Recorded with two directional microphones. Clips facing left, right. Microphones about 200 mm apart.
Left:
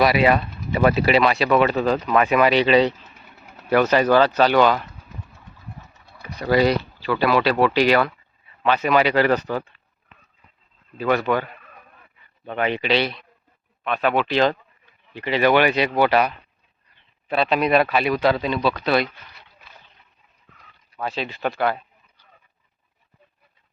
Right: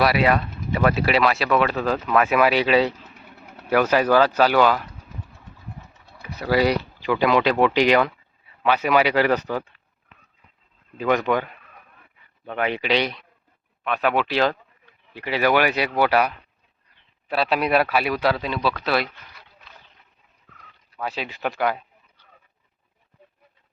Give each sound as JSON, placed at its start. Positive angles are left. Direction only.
{"t": 0.0, "sound": "speech", "side_deg": 0}
{"t": 6.1, "sound": "speech", "side_deg": -5}
{"t": 10.9, "sound": "speech", "side_deg": -15}
{"t": 12.5, "sound": "speech", "side_deg": -10}
{"t": 17.3, "sound": "speech", "side_deg": -5}
{"t": 21.0, "sound": "speech", "side_deg": -10}